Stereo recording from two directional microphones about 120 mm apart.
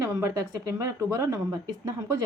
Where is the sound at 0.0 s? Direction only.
25° right (ahead or behind).